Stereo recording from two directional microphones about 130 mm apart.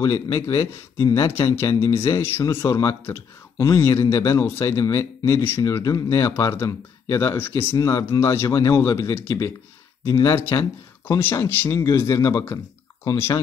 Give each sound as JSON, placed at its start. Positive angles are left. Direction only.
{"t": 0.0, "sound": "speech", "side_deg": 25}